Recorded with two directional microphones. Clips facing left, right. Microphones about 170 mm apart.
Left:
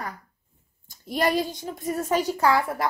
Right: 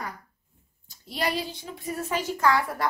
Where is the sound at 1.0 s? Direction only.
50° left (ahead or behind).